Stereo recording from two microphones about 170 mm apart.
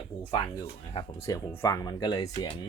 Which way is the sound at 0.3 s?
25° left (ahead or behind).